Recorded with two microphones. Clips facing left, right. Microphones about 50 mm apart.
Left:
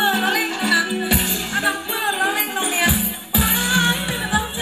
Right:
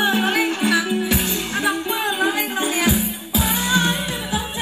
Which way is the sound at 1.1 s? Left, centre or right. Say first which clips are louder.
Even; left.